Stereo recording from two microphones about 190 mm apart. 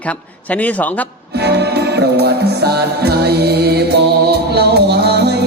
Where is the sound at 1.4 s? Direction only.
60° right (ahead or behind).